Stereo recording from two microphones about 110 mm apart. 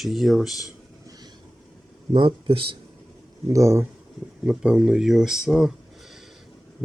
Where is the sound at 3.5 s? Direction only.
25° right (ahead or behind).